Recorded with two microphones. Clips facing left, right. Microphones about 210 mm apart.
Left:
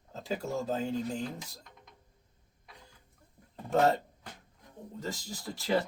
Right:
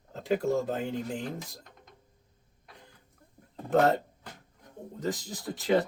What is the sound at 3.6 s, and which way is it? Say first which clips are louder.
Speech: right 2 dB; 55° right (ahead or behind).